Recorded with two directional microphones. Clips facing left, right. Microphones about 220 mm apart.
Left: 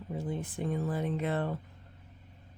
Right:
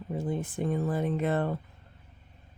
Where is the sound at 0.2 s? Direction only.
50° right (ahead or behind).